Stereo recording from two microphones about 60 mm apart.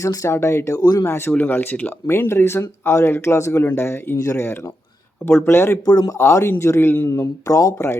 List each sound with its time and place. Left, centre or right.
0.0 s speech: left
1.0 s speech: left
1.3 s a man's voice: left
7.1 s speech: left